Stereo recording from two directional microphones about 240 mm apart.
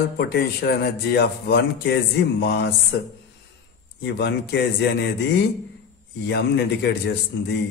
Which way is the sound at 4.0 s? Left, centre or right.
Left.